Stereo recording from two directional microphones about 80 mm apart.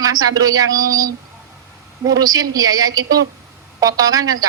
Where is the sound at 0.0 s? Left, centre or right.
Right.